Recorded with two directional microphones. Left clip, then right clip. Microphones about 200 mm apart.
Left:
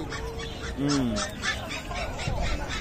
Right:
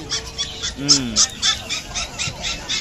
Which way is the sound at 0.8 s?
45° left (ahead or behind).